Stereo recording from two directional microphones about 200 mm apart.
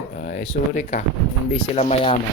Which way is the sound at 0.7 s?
35° left (ahead or behind).